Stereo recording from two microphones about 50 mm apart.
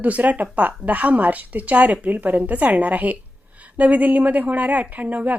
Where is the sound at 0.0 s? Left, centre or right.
Right.